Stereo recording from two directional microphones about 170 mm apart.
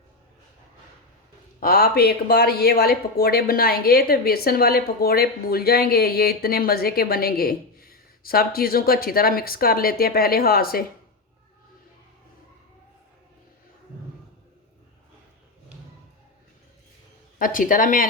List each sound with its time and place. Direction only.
1.5 s speech: 65° left (ahead or behind)
17.3 s speech: 55° left (ahead or behind)